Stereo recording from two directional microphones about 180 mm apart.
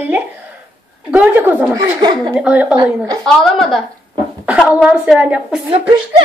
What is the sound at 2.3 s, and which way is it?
A woman's voice, 5° right (ahead or behind).